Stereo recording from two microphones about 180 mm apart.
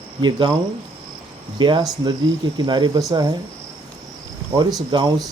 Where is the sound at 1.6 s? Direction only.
25° right (ahead or behind).